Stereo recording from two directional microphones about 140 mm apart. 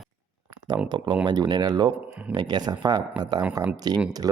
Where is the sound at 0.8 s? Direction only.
30° right (ahead or behind).